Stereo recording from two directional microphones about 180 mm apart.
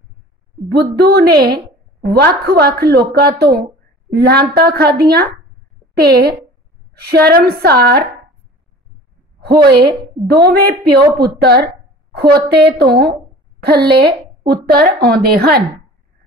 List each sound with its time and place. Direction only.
0.7 s a woman's voice: 65° right (ahead or behind)
9.7 s a woman's voice: 60° right (ahead or behind)